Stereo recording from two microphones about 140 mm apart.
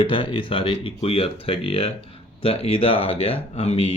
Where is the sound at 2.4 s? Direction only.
45° left (ahead or behind).